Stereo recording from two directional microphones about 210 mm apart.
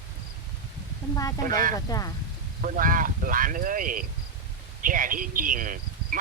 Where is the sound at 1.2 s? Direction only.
15° left (ahead or behind).